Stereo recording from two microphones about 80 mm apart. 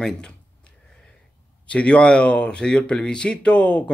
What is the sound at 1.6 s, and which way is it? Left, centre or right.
Speech, centre.